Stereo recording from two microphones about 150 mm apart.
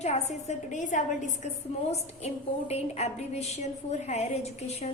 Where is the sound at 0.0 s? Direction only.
45° left (ahead or behind).